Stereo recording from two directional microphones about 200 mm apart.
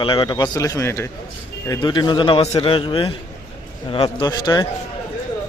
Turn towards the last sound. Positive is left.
turn(degrees=20)  # may be behind; listen again after turning